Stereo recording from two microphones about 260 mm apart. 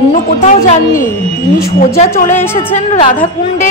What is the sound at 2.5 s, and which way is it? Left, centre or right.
Speech, left.